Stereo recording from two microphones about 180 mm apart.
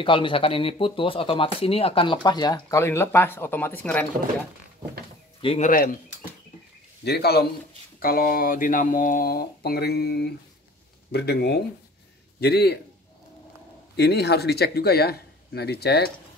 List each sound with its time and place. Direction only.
0.0 s speech: 30° left (ahead or behind); by 4.1 s 10° left (ahead or behind)
5.4 s speech: 30° left (ahead or behind)
7.1 s speech: 60° left (ahead or behind)
13.9 s speech: 65° left (ahead or behind)